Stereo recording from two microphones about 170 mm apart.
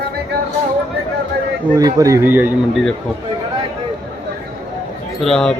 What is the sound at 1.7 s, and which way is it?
Speech, 20° right (ahead or behind).